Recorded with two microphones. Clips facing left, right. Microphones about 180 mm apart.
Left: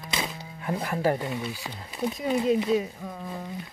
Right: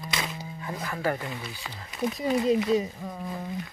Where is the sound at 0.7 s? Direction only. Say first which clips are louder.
Left 4 dB; 30° left (ahead or behind).